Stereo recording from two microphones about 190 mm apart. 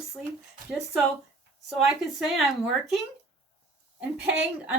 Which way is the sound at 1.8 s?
Centre (ahead or behind).